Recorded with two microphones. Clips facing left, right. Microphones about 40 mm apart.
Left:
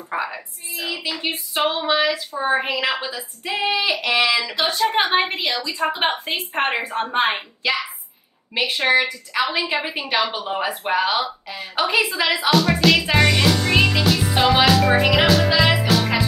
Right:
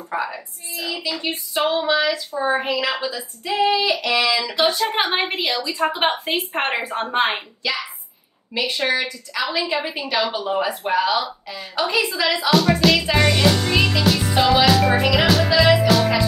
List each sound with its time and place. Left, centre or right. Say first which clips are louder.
0.1 s a woman's voice: even; centre
4.6 s a woman's voice: right 1 dB; centre
8.5 s speech: left 3 dB; centre
12.4 s a woman's voice: even; centre
13.0 s music: even; centre
14.3 s a woman's voice: even; centre
15.6 s music: right 3 dB; centre
15.9 s music: right 2 dB; centre